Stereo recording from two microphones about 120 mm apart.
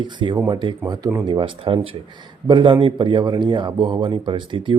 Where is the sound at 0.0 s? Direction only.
40° right (ahead or behind).